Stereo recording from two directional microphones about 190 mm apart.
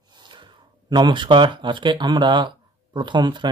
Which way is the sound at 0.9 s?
25° right (ahead or behind).